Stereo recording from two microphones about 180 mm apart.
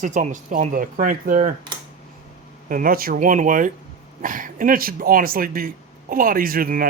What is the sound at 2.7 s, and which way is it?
Speech, 50° right (ahead or behind).